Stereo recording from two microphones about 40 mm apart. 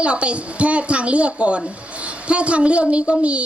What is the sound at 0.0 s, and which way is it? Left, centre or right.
A woman's voice, right.